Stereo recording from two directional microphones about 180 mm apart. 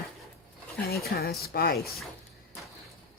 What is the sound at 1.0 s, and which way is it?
Speech, 60° left (ahead or behind).